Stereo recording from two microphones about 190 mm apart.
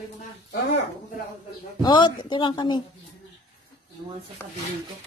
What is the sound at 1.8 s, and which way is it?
Speech, 20° left (ahead or behind).